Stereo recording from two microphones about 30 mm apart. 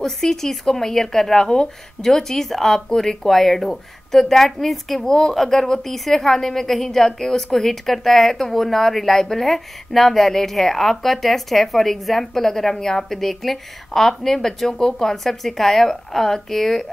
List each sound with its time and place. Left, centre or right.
0.0 s a woman's voice: centre
5.0 s speech: centre
5.3 s a woman's voice: centre
14.7 s a woman's voice: left